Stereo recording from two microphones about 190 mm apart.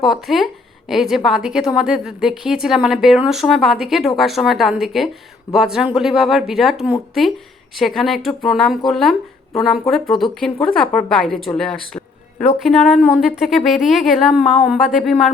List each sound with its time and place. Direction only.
0.0 s a woman's voice: centre (ahead or behind)
11.9 s a sound: 35° left (ahead or behind)
12.5 s a woman's voice: centre (ahead or behind)